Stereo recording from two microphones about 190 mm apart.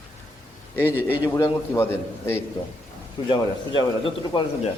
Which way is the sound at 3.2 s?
25° left (ahead or behind).